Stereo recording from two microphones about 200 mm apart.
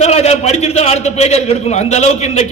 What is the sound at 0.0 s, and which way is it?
A man's voice, 30° left (ahead or behind).